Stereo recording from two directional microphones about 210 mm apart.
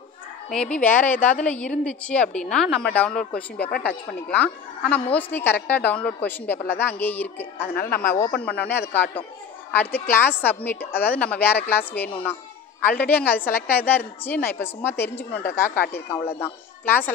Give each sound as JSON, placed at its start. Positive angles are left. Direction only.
{"t": 0.5, "sound": "a woman's voice", "side_deg": 5}
{"t": 7.7, "sound": "a man's voice", "side_deg": 45}
{"t": 8.0, "sound": "a woman's voice", "side_deg": 10}
{"t": 8.8, "sound": "a man's voice", "side_deg": 55}
{"t": 9.8, "sound": "a woman's voice", "side_deg": 10}